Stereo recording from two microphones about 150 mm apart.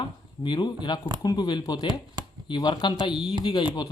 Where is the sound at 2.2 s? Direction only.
30° right (ahead or behind).